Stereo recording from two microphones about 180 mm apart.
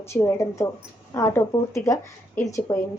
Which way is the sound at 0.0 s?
15° left (ahead or behind).